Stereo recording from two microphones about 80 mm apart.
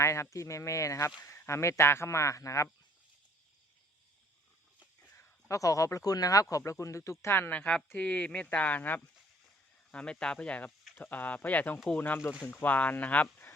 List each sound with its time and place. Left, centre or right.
0.0 s speech: left
5.5 s speech: left; by 13.2 s centre